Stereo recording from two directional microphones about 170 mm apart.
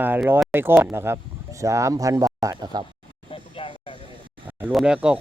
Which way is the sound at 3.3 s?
30° left (ahead or behind).